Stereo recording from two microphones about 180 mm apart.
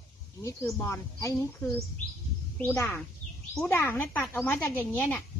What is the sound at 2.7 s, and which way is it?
Speech, 15° left (ahead or behind).